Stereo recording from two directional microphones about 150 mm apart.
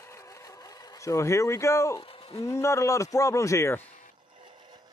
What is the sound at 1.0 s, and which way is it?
Speech, 20° left (ahead or behind).